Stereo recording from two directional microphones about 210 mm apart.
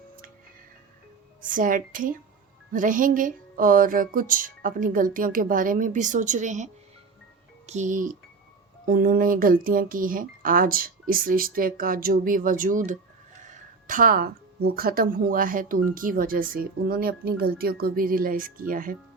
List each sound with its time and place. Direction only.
1.4 s a woman's voice: 40° right (ahead or behind)
7.7 s speech: 35° right (ahead or behind)